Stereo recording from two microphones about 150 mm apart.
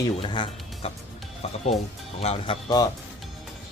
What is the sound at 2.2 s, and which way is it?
Speech, 45° left (ahead or behind).